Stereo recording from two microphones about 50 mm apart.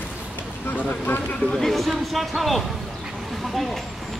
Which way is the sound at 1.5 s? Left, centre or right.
Centre.